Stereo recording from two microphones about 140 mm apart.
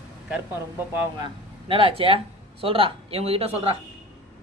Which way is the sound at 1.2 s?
40° right (ahead or behind).